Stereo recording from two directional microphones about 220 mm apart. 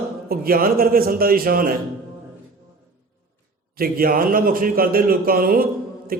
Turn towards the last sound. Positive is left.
turn(degrees=-40)  # may be behind; listen again after turning